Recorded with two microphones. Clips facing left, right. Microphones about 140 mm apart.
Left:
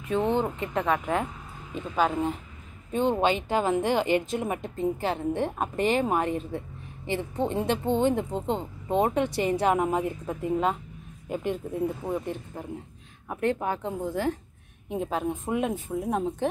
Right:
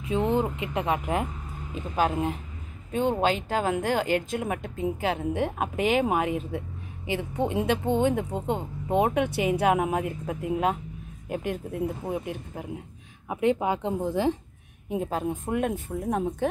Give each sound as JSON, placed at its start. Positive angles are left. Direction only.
{"t": 0.2, "sound": "speech", "side_deg": -5}
{"t": 14.9, "sound": "speech", "side_deg": 0}